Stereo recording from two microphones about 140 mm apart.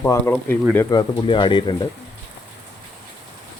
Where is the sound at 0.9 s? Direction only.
30° left (ahead or behind).